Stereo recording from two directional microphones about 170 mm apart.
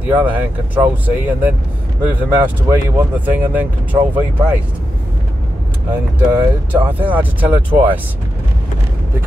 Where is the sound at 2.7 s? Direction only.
20° right (ahead or behind).